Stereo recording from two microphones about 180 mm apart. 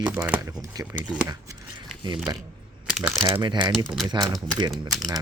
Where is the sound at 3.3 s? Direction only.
25° right (ahead or behind).